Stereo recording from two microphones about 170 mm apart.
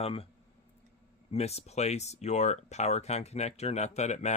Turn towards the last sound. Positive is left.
turn(degrees=40)  # may be behind; listen again after turning